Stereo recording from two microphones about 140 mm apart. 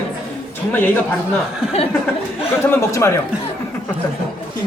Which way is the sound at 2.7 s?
20° left (ahead or behind).